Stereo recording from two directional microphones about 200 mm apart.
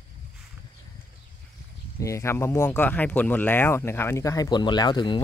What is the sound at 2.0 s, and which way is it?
Speech, 15° left (ahead or behind).